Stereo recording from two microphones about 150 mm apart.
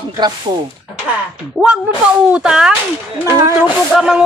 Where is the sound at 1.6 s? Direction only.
Centre (ahead or behind).